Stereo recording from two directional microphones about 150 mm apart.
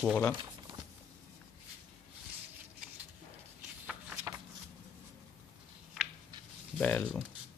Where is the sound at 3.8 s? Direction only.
15° right (ahead or behind).